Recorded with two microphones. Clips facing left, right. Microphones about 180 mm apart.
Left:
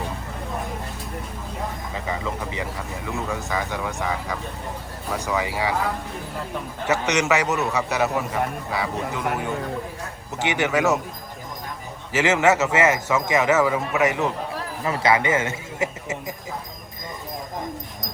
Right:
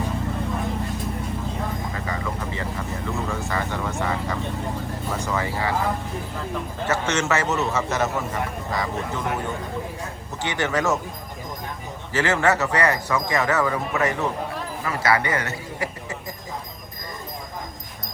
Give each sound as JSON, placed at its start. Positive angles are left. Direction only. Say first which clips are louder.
{"t": 2.0, "sound": "vehicle", "louder": "left 3 dB", "side_deg": 15}
{"t": 2.7, "sound": "vehicle", "louder": "right 1 dB", "side_deg": 0}
{"t": 3.3, "sound": "speech", "louder": "even", "side_deg": 15}
{"t": 5.4, "sound": "speech", "louder": "left 1 dB", "side_deg": 15}
{"t": 6.8, "sound": "speech", "louder": "left 2 dB", "side_deg": 15}
{"t": 10.4, "sound": "speech", "louder": "left 2 dB", "side_deg": 15}
{"t": 12.1, "sound": "a man's voice", "louder": "left 2 dB", "side_deg": 15}